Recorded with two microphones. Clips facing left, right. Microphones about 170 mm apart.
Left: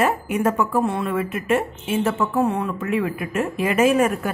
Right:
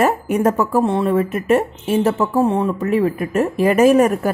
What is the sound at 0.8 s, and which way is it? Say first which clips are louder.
Speech: right 5 dB; 25° right (ahead or behind).